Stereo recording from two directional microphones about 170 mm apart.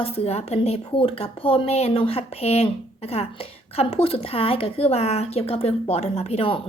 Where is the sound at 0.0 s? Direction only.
35° left (ahead or behind).